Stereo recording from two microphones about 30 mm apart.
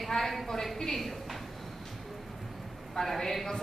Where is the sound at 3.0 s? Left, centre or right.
Centre.